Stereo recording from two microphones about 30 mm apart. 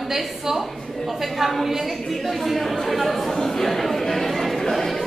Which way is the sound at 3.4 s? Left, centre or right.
Centre.